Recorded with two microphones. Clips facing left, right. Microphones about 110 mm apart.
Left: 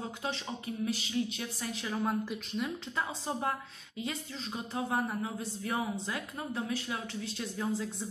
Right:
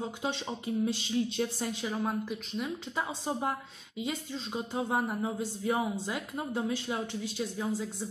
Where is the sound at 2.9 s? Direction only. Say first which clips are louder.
Right 2 dB; 15° right (ahead or behind).